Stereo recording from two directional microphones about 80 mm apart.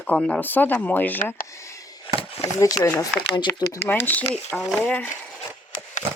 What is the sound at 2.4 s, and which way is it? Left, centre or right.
Speech, left.